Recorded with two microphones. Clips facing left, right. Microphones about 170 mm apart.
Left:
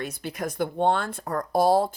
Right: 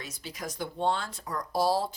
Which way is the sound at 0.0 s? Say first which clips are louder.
Left 8 dB; 55° left (ahead or behind).